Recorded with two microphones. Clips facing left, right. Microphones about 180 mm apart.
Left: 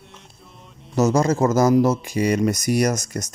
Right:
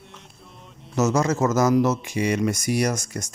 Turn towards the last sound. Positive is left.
turn(degrees=40)  # may be behind; listen again after turning